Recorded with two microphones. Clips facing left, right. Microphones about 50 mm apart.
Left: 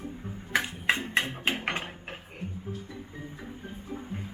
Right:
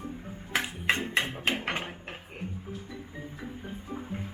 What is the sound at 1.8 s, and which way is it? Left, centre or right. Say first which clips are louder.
Dishes: right 1 dB; centre.